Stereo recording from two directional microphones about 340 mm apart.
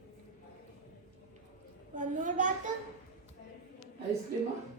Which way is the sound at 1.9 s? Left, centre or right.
Right.